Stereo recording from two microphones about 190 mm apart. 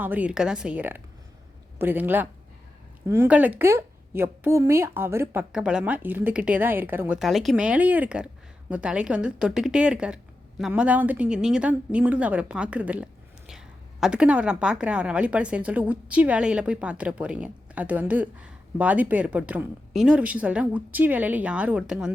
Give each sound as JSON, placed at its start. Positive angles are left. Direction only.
{"t": 0.0, "sound": "a woman's voice", "side_deg": -10}